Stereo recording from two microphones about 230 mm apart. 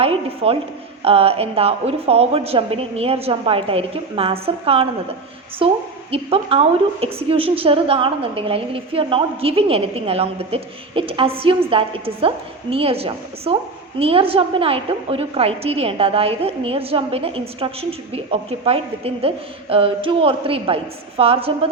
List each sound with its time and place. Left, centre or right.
0.4 s a woman's voice: right